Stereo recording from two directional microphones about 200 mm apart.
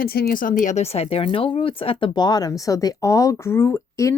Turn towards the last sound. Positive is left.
turn(degrees=15)  # may be behind; listen again after turning